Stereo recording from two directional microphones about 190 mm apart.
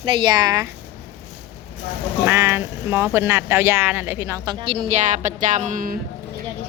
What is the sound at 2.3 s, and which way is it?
Speech, 15° right (ahead or behind).